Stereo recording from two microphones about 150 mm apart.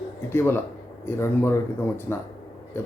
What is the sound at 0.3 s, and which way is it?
Speech, 15° left (ahead or behind).